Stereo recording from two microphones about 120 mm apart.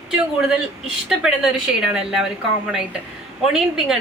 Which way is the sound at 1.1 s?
5° right (ahead or behind).